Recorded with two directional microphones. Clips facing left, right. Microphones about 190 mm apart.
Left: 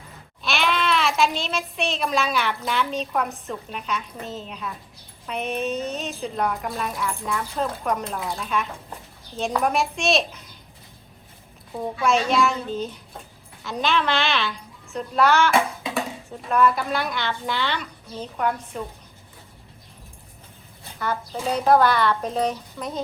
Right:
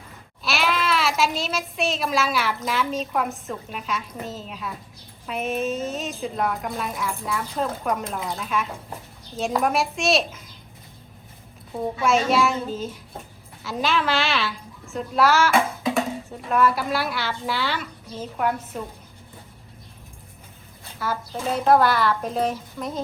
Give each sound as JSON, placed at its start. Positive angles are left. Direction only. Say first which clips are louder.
{"t": 0.4, "sound": "a child's voice", "louder": "even", "side_deg": -5}
{"t": 12.0, "sound": "a woman's voice", "louder": "even", "side_deg": 0}
{"t": 21.0, "sound": "a woman's voice", "louder": "left 1 dB", "side_deg": 0}